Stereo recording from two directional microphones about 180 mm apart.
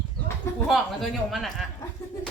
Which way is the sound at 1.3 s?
Centre (ahead or behind).